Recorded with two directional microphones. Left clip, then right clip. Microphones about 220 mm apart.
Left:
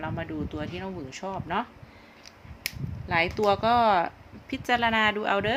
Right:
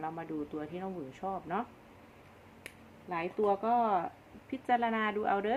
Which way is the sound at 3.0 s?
25° left (ahead or behind).